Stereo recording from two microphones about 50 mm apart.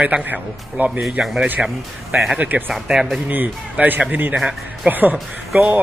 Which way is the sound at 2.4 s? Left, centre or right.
Right.